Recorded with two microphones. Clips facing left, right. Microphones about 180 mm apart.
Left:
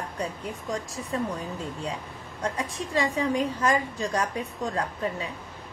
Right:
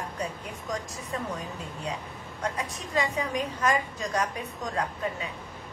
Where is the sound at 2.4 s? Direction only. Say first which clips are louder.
Left 3 dB; 30° left (ahead or behind).